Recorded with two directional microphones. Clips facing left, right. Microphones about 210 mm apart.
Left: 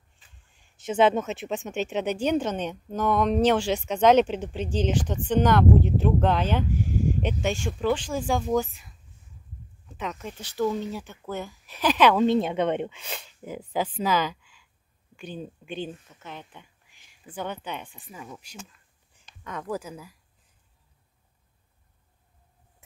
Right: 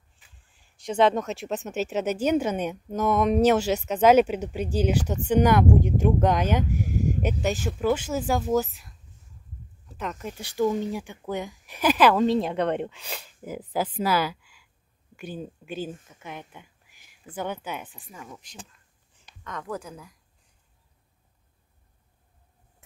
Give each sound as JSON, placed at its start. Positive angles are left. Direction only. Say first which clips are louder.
{"t": 0.6, "sound": "speech", "louder": "even", "side_deg": 5}